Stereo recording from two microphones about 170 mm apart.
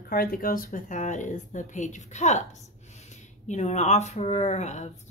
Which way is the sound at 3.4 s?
45° left (ahead or behind).